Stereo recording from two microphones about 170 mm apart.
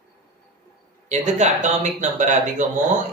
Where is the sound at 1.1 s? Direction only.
45° right (ahead or behind).